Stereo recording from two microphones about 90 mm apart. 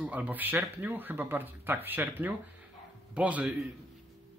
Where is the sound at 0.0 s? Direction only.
15° right (ahead or behind).